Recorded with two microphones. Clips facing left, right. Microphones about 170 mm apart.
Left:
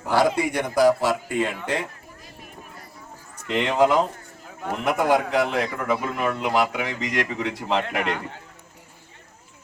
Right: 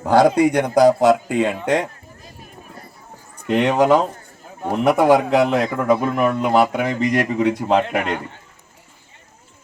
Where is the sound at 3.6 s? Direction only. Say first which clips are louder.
Right 3 dB; 75° right (ahead or behind).